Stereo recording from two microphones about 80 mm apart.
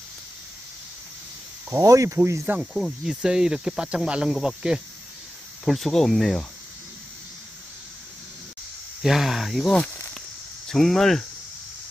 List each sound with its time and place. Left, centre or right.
1.8 s speech: right
2.4 s speech: centre
2.7 s speech: centre
5.7 s speech: centre
9.0 s speech: centre